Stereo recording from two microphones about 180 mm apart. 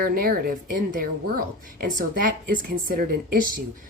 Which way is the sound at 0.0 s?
55° right (ahead or behind).